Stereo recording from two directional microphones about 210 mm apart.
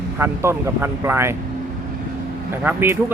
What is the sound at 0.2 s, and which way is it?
Speech, 10° right (ahead or behind).